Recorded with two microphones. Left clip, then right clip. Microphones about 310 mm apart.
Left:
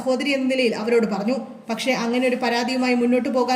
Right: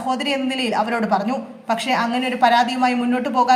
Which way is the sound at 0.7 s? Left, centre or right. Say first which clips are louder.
Right 2 dB; centre.